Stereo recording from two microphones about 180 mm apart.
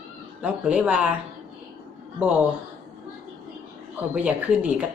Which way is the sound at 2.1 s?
10° right (ahead or behind).